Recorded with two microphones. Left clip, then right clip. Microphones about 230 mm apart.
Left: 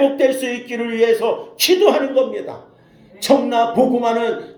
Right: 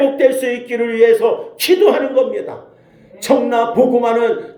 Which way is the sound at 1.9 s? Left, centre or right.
Left.